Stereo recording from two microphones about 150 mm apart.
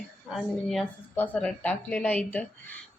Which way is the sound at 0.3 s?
Centre (ahead or behind).